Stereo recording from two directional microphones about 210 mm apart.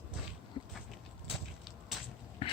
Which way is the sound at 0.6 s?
25° left (ahead or behind).